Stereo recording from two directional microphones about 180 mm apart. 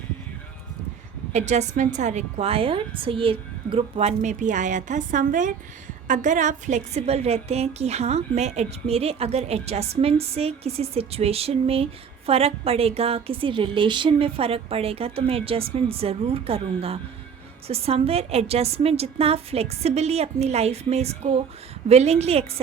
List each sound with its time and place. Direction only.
1.3 s a woman's voice: 40° right (ahead or behind)